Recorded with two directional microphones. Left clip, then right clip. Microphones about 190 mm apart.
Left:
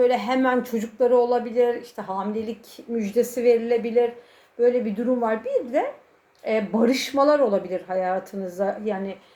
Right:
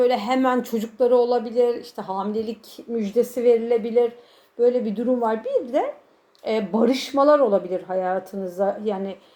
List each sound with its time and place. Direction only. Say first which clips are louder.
0.0 s speech: right 1 dB; 30° right (ahead or behind)
6.4 s speech: right 1 dB; 25° right (ahead or behind)